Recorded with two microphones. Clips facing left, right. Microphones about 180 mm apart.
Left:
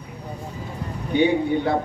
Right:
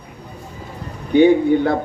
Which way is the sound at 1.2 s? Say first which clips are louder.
Right 7 dB; 50° right (ahead or behind).